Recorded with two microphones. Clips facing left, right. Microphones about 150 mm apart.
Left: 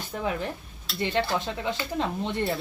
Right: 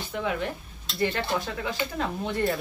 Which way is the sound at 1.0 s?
25° left (ahead or behind).